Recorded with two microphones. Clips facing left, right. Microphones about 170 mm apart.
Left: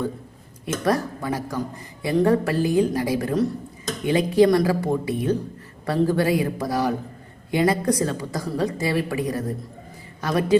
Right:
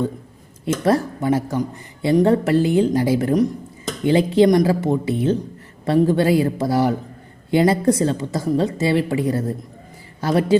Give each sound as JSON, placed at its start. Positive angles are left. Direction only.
{"t": 0.6, "sound": "a woman's voice", "side_deg": -25}